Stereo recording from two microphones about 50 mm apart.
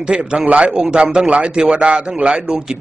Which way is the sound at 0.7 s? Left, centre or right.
Centre.